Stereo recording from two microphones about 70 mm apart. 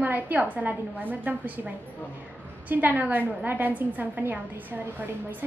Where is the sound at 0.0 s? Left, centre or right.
Right.